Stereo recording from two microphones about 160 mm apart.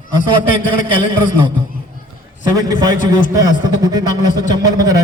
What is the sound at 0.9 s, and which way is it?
Speech, 30° right (ahead or behind).